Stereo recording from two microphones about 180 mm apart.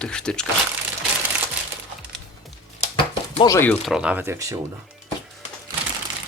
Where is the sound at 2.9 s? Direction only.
25° left (ahead or behind).